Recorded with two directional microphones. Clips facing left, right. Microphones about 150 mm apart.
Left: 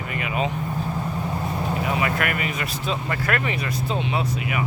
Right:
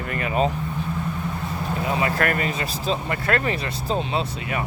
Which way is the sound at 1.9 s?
30° right (ahead or behind).